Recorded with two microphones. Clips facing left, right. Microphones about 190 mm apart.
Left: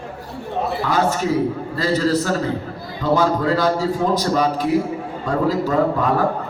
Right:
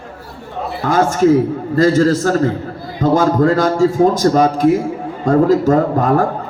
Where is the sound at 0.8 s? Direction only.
45° right (ahead or behind).